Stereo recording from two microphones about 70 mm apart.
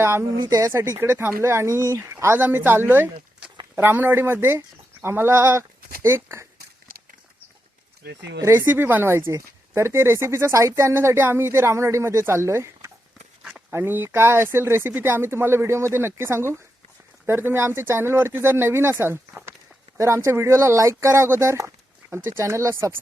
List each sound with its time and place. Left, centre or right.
0.0 s speech: right
0.4 s speech: right
0.7 s speech: right
2.4 s speech: right
8.5 s speech: right
9.1 s speech: right